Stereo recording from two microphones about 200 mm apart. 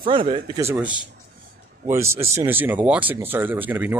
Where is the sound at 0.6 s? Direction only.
10° right (ahead or behind).